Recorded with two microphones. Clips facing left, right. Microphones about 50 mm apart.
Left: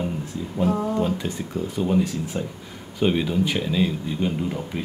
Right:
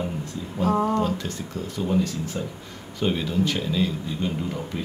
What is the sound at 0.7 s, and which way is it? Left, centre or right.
Speech, right.